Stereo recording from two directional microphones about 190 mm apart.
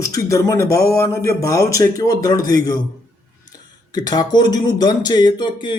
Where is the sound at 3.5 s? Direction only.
20° left (ahead or behind).